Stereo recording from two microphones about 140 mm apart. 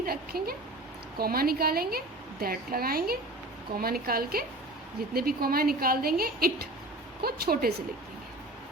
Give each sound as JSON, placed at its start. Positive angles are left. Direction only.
{"t": 0.0, "sound": "a woman's voice", "side_deg": -90}